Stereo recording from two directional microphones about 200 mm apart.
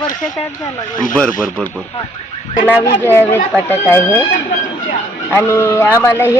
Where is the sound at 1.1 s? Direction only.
5° left (ahead or behind).